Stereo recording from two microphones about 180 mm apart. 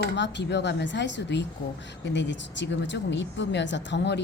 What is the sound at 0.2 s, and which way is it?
A woman's voice, 75° left (ahead or behind).